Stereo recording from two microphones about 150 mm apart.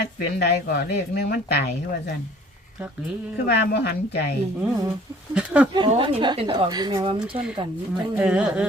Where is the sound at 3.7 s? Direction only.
90° left.